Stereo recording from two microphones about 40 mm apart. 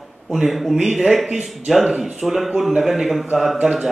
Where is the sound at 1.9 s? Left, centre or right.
Centre.